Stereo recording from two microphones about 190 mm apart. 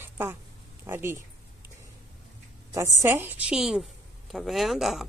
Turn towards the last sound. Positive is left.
turn(degrees=0)  # may be behind; listen again after turning